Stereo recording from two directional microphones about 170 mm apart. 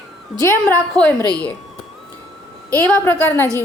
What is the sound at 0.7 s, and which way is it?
Speech, 10° left (ahead or behind).